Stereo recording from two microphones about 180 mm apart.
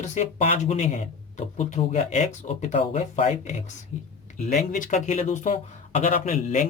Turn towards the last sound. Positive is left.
turn(degrees=45)  # may be behind; listen again after turning